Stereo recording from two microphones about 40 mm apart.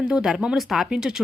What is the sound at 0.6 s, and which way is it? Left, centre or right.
Speech, centre.